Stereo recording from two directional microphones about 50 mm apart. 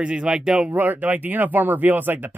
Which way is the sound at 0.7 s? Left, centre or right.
Right.